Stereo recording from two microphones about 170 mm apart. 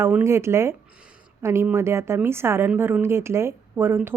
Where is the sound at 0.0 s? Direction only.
10° right (ahead or behind).